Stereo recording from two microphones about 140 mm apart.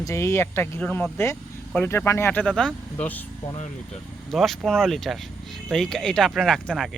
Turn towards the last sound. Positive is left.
turn(degrees=0)  # may be behind; listen again after turning